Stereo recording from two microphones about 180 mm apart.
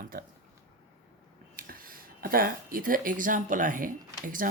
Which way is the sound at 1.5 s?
50° right (ahead or behind).